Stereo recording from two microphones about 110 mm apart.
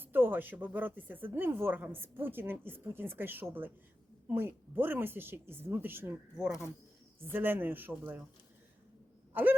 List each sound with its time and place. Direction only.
0.0 s a woman's voice: 20° right (ahead or behind)
6.3 s speech: 5° right (ahead or behind)
7.3 s a woman's voice: 20° right (ahead or behind)
9.3 s owl: 15° right (ahead or behind)